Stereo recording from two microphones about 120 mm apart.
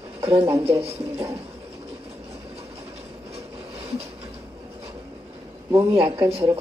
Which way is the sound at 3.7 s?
55° right (ahead or behind).